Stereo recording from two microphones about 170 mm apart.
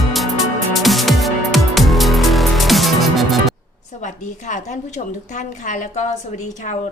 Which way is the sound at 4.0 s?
50° left (ahead or behind).